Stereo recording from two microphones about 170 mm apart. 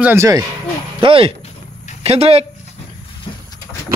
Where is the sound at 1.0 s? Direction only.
35° right (ahead or behind).